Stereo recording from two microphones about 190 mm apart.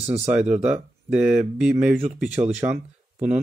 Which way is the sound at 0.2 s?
5° right (ahead or behind).